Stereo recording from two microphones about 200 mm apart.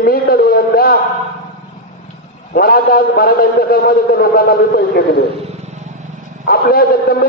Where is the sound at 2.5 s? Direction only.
50° left (ahead or behind).